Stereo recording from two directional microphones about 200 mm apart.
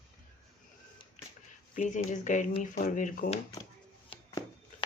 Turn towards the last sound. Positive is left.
turn(degrees=40)  # may be behind; listen again after turning